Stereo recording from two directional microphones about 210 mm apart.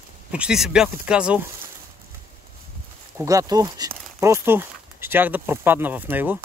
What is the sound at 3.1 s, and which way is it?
Speech, 15° right (ahead or behind).